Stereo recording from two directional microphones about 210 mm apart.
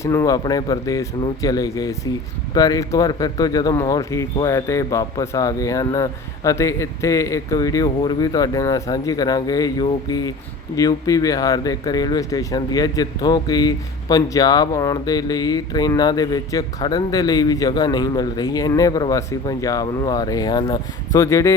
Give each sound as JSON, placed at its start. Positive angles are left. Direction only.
{"t": 0.0, "sound": "speech", "side_deg": 15}